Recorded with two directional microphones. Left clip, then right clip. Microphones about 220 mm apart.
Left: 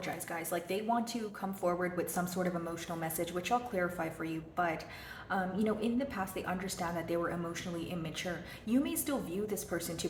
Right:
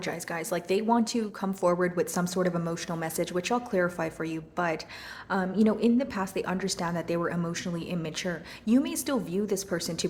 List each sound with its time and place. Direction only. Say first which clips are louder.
0.0 s speech: right 6 dB; 45° right (ahead or behind)